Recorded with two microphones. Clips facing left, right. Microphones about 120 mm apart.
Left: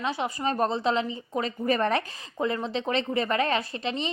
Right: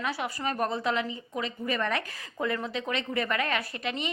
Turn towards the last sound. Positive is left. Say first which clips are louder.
# left 3 dB
turn(degrees=30)  # may be behind; listen again after turning